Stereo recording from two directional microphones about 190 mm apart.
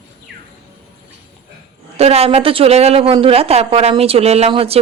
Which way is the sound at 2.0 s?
30° right (ahead or behind).